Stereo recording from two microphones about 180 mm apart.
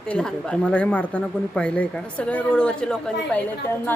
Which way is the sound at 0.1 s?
5° left (ahead or behind).